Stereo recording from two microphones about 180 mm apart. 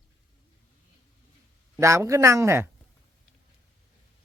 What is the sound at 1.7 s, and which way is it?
Speech, 15° right (ahead or behind).